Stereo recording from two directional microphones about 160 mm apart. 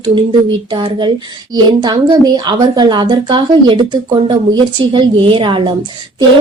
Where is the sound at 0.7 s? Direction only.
30° right (ahead or behind).